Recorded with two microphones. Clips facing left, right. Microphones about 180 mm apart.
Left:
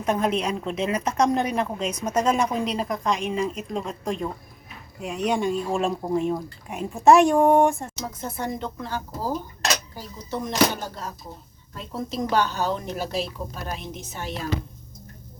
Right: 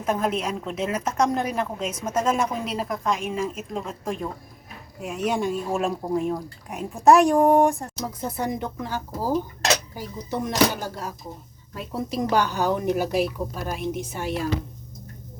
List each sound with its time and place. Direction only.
0.0 s speech: 5° right (ahead or behind)
8.2 s a woman's voice: 15° right (ahead or behind)